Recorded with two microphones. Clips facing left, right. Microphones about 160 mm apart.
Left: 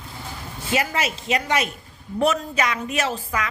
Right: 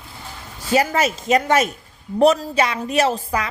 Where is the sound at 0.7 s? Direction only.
40° right (ahead or behind).